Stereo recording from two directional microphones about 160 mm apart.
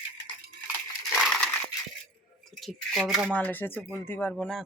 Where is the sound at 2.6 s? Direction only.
Centre (ahead or behind).